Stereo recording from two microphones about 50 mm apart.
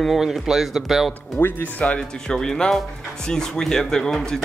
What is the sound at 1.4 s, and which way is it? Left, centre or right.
Speech, left.